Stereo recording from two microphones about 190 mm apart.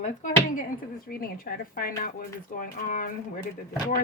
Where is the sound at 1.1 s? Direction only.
50° left (ahead or behind).